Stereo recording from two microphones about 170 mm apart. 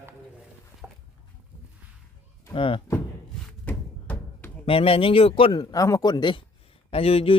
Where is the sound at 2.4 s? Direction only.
30° left (ahead or behind).